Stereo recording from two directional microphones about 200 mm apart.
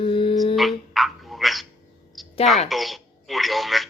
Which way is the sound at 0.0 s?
25° left (ahead or behind).